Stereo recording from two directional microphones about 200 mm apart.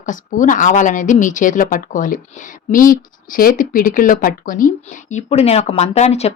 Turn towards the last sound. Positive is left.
turn(degrees=30)  # may be behind; listen again after turning